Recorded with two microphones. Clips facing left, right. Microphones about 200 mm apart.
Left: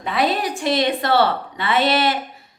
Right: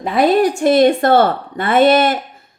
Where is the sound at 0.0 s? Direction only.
45° right (ahead or behind).